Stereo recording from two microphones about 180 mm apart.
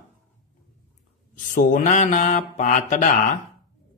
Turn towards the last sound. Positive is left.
turn(degrees=45)  # may be behind; listen again after turning